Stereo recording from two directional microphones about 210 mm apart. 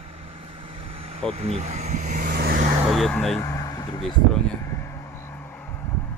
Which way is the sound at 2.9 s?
Centre (ahead or behind).